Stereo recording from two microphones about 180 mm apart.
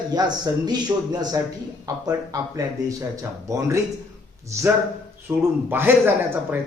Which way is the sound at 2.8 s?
15° right (ahead or behind).